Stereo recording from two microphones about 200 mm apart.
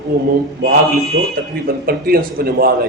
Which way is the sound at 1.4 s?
45° right (ahead or behind).